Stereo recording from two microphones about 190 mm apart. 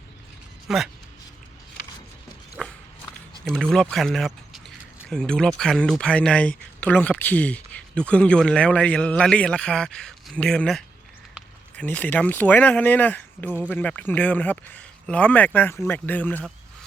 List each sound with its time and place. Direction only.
0.7 s speech: centre (ahead or behind)
2.6 s horse: 5° right (ahead or behind)
3.4 s speech: centre (ahead or behind)